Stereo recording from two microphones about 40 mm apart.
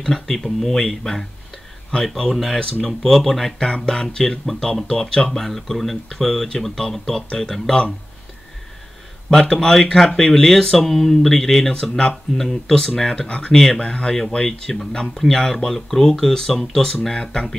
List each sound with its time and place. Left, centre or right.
0.0 s speech: centre
9.3 s speech: centre